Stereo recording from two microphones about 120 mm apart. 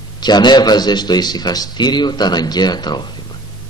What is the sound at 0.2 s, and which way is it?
A man's voice, 35° left (ahead or behind).